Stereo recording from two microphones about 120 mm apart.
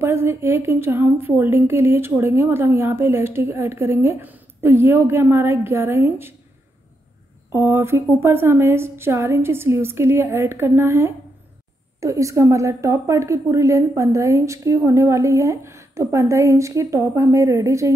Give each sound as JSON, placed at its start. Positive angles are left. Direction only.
{"t": 0.0, "sound": "a woman's voice", "side_deg": -20}
{"t": 7.5, "sound": "a woman's voice", "side_deg": -20}